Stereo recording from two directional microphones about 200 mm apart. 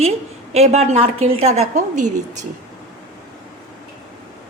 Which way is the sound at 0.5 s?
30° right (ahead or behind).